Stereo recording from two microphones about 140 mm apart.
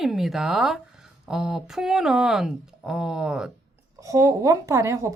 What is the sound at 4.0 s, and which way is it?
Speech, 25° right (ahead or behind).